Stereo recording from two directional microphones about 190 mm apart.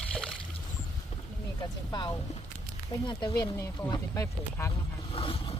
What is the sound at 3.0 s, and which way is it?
Speech, 25° left (ahead or behind).